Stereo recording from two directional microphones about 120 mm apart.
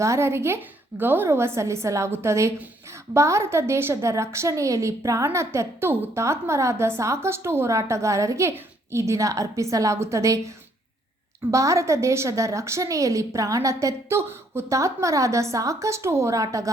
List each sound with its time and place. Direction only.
0.0 s a woman's voice: 25° right (ahead or behind)
11.5 s a woman's voice: 25° right (ahead or behind)